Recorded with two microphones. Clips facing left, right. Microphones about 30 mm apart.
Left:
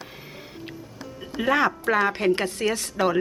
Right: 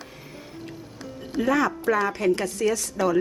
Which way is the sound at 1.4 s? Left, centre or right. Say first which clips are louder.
Left 1 dB; left.